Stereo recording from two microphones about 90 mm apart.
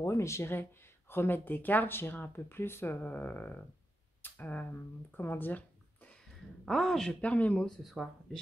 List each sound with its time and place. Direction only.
0.0 s speech: 30° left (ahead or behind)
4.2 s a sound: 20° left (ahead or behind)
5.1 s speech: 25° left (ahead or behind)
6.6 s speech: 5° left (ahead or behind)
7.6 s speech: centre (ahead or behind)